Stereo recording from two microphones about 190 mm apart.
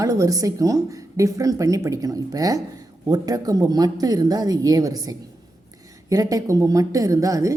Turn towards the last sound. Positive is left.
turn(degrees=-15)  # may be behind; listen again after turning